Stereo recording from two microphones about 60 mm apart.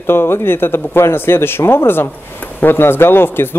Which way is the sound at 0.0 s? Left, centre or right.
Left.